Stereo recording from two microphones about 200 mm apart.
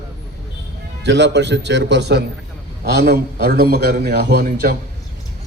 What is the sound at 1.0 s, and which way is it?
A man's voice, 60° right (ahead or behind).